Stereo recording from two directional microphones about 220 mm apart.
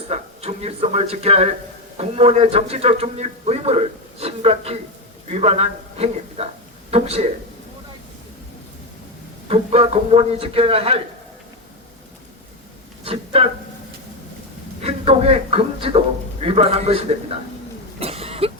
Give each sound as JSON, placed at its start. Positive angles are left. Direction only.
{"t": 0.1, "sound": "a man's voice", "side_deg": -30}
{"t": 9.5, "sound": "a man's voice", "side_deg": -25}
{"t": 13.1, "sound": "speech", "side_deg": -25}
{"t": 14.8, "sound": "a man's voice", "side_deg": -25}
{"t": 18.0, "sound": "cough", "side_deg": -25}